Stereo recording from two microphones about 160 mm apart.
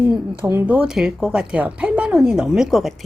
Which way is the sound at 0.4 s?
10° right (ahead or behind).